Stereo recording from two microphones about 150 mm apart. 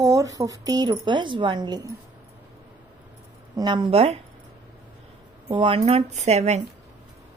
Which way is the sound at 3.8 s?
40° right (ahead or behind).